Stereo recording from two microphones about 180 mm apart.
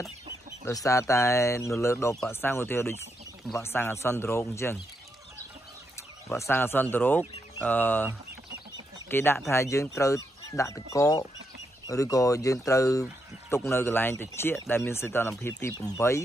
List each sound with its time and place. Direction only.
0.7 s speech: 15° left (ahead or behind)
6.2 s speech: 15° left (ahead or behind)
9.1 s speech: 10° left (ahead or behind)